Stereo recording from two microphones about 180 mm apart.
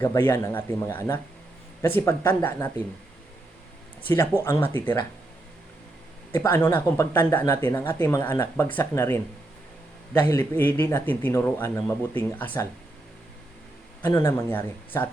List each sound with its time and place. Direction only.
0.0 s speech: 15° left (ahead or behind)
4.0 s speech: 15° left (ahead or behind)
6.3 s speech: 10° left (ahead or behind)
10.2 s speech: 15° left (ahead or behind)
14.1 s speech: 15° left (ahead or behind)